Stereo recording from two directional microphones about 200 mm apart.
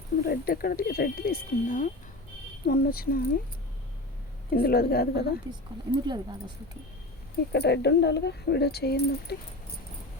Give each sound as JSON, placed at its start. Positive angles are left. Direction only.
{"t": 0.3, "sound": "speech", "side_deg": 50}
{"t": 4.5, "sound": "speech", "side_deg": 50}
{"t": 5.5, "sound": "speech", "side_deg": -20}
{"t": 7.5, "sound": "speech", "side_deg": 55}